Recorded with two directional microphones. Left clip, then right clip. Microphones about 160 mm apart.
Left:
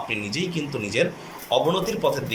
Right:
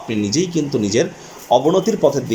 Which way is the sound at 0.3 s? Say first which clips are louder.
Right 9 dB; 40° right (ahead or behind).